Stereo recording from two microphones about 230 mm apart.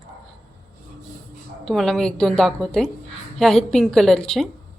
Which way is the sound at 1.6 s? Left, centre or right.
Centre.